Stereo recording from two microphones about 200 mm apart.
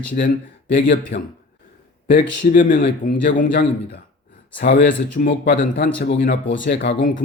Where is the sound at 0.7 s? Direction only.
60° left (ahead or behind).